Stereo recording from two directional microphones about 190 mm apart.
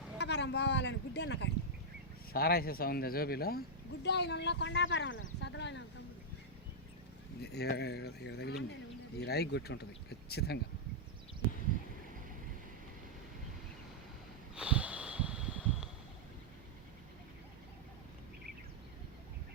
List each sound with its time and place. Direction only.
0.2 s speech: 65° left (ahead or behind)
2.3 s speech: 55° left (ahead or behind)
7.4 s speech: 60° left (ahead or behind)
14.5 s snort: 5° right (ahead or behind)